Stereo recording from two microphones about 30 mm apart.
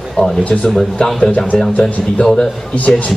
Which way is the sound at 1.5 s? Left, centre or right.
Left.